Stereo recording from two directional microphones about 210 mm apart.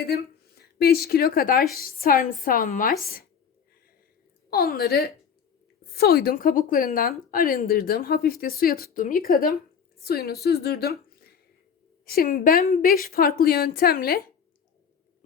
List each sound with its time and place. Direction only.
0.0 s a woman's voice: 50° left (ahead or behind)
4.5 s a woman's voice: 45° left (ahead or behind)
11.1 s a sound: 45° left (ahead or behind)
12.0 s a woman's voice: 45° left (ahead or behind)